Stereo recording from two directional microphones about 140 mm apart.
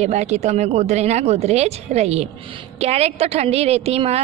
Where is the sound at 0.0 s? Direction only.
55° right (ahead or behind).